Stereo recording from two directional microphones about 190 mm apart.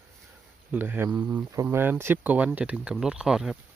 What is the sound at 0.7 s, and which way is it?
Speech, 10° right (ahead or behind).